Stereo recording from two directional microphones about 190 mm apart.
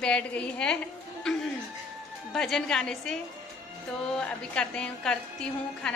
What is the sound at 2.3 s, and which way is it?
A woman's voice, 5° left (ahead or behind).